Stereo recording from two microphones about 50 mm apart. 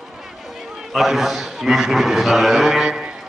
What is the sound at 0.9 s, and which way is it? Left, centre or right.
A man's voice, centre.